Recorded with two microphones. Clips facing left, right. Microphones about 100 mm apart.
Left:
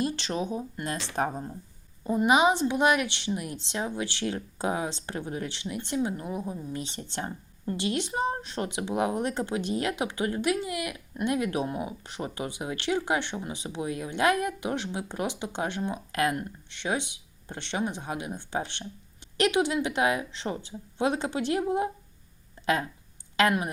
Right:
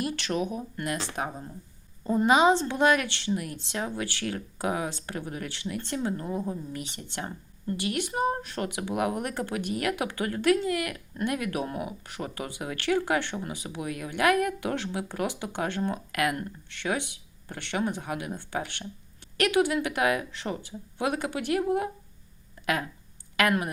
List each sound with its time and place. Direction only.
0.0 s speech: 25° left (ahead or behind)
1.1 s speech: 35° left (ahead or behind)
2.0 s speech: 15° left (ahead or behind)
6.7 s speech: 30° left (ahead or behind)